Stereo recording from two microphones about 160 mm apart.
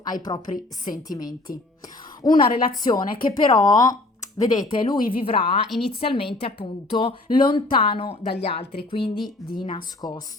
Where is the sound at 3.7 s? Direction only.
25° left (ahead or behind).